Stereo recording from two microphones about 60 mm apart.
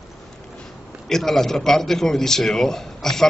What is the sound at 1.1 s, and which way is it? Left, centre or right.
A man's voice, centre.